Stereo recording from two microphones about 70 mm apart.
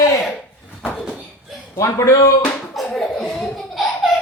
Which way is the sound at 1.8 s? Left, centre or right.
Left.